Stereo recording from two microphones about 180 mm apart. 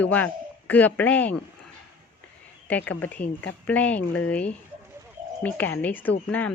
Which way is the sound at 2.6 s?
10° left (ahead or behind).